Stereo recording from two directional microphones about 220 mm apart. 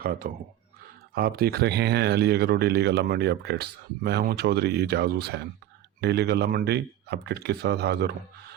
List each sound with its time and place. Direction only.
0.0 s speech: 40° right (ahead or behind)